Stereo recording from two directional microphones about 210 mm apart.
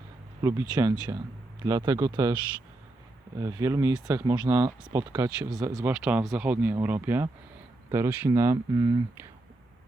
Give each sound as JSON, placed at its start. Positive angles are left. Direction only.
{"t": 0.7, "sound": "speech", "side_deg": -15}